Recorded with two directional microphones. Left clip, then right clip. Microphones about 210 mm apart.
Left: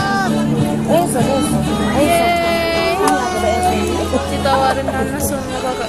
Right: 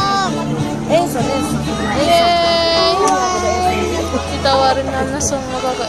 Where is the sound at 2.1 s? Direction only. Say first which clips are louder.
Right 2 dB; 20° right (ahead or behind).